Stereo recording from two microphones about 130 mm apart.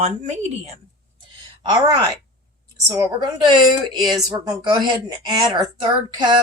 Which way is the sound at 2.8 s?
20° right (ahead or behind).